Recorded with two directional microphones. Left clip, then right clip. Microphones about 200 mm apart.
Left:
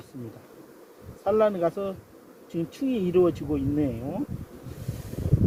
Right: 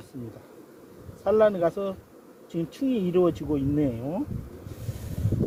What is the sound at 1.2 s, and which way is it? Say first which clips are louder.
Speech: right 2 dB; 15° right (ahead or behind).